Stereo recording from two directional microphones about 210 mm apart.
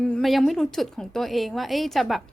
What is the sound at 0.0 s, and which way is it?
A woman's voice, centre (ahead or behind).